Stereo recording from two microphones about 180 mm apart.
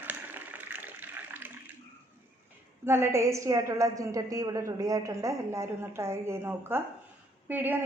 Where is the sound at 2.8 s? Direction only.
15° right (ahead or behind).